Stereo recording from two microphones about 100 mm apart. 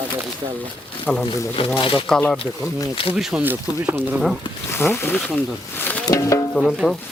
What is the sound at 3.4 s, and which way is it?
Speech, 20° right (ahead or behind).